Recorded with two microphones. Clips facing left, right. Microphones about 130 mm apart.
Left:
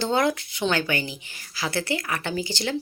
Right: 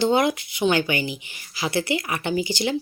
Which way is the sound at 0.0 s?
15° right (ahead or behind).